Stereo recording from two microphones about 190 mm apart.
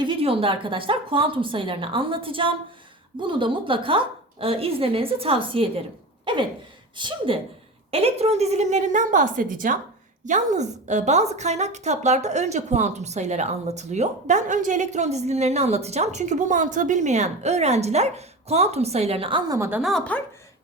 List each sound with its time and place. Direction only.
0.0 s a woman's voice: 30° right (ahead or behind)
19.5 s speech: 15° right (ahead or behind)
19.8 s speech: centre (ahead or behind)